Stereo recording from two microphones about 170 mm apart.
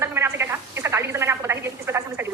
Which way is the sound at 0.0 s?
15° right (ahead or behind).